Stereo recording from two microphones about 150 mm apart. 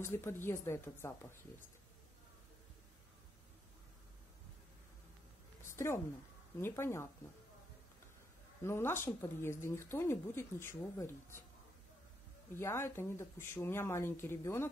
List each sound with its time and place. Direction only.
0.0 s speech: 15° left (ahead or behind)
5.7 s a sound: 15° left (ahead or behind)
6.6 s speech: 15° left (ahead or behind)
8.6 s speech: 15° left (ahead or behind)
12.5 s speech: 15° left (ahead or behind)